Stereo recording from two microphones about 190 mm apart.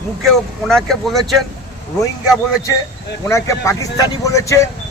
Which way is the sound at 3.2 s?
15° left (ahead or behind).